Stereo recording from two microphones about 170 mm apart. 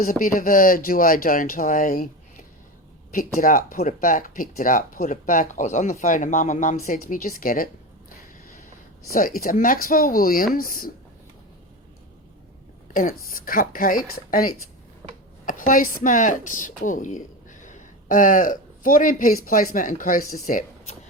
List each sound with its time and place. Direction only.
0.0 s speech: 55° left (ahead or behind)
3.3 s speech: 55° left (ahead or behind)
9.1 s speech: 55° left (ahead or behind)
12.9 s a woman's voice: 55° left (ahead or behind)